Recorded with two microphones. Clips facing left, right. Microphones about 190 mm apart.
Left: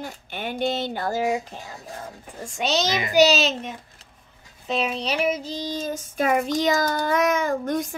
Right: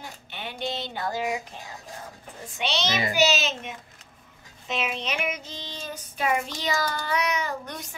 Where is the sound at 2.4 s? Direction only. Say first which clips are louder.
Left 5 dB; 40° left (ahead or behind).